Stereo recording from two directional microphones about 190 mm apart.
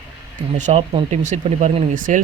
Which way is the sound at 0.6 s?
35° right (ahead or behind).